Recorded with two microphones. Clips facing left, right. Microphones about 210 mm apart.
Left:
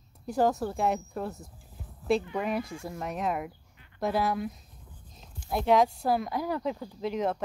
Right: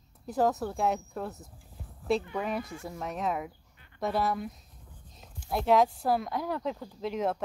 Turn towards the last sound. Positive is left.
turn(degrees=-5)  # may be behind; listen again after turning